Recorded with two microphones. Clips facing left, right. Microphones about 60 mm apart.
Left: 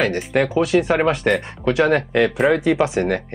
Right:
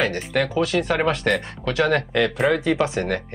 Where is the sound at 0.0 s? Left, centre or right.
Centre.